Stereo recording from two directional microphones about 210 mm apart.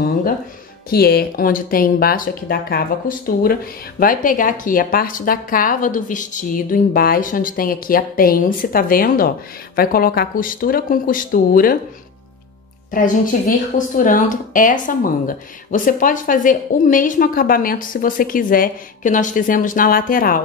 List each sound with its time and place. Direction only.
0.8 s speech: 45° left (ahead or behind)
12.9 s speech: 40° left (ahead or behind)